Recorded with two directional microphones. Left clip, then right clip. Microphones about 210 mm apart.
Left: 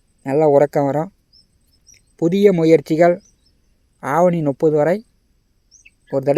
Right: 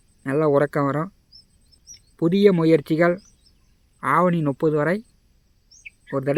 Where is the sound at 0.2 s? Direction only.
20° left (ahead or behind).